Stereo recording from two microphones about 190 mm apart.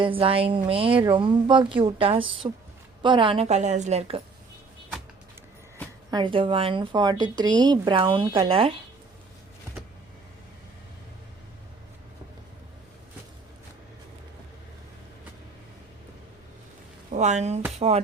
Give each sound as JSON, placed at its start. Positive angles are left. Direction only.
{"t": 0.0, "sound": "a woman's voice", "side_deg": -30}
{"t": 6.1, "sound": "speech", "side_deg": -25}
{"t": 17.1, "sound": "a woman's voice", "side_deg": -40}